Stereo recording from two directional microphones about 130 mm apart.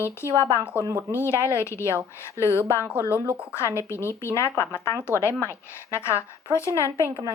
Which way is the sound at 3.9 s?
20° left (ahead or behind).